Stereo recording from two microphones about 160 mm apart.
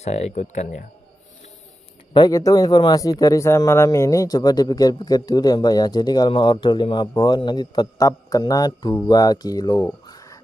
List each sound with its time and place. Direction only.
0.0 s speech: 40° left (ahead or behind)
2.1 s speech: 25° left (ahead or behind)
10.0 s a sound: 20° left (ahead or behind)